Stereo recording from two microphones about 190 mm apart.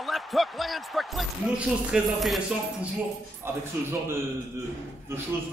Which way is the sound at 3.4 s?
15° right (ahead or behind).